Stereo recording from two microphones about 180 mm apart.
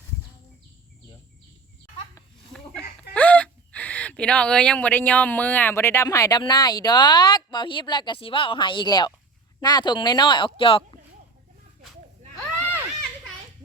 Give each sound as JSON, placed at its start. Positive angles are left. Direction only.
{"t": 2.5, "sound": "speech", "side_deg": 5}